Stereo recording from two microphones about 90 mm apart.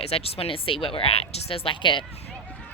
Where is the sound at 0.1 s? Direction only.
90° left.